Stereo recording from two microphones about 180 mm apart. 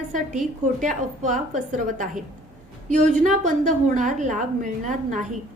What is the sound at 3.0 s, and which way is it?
A woman's voice, 45° right (ahead or behind).